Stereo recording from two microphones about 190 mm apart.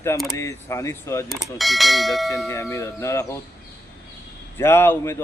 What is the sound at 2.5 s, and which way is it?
Speech, 15° left (ahead or behind).